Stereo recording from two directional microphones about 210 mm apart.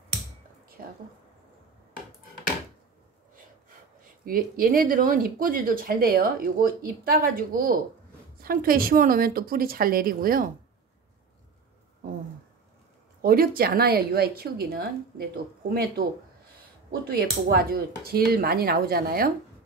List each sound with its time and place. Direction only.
0.8 s speech: 40° right (ahead or behind)
4.3 s speech: 45° right (ahead or behind)
13.2 s speech: 45° right (ahead or behind)
17.1 s speech: 45° right (ahead or behind)